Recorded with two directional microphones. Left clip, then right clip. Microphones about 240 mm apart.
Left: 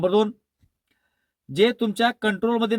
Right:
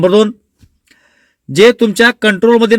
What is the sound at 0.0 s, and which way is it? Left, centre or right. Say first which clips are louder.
Speech: right 11 dB; left.